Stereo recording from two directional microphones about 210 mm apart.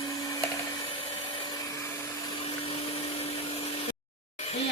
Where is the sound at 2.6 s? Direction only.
25° left (ahead or behind).